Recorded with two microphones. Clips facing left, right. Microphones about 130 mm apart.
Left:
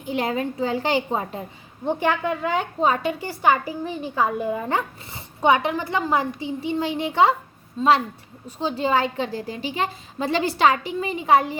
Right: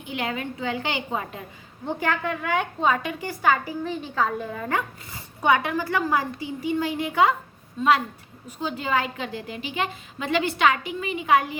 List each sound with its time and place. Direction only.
0.0 s a woman's voice: 35° left (ahead or behind)
1.8 s a woman's voice: 20° left (ahead or behind)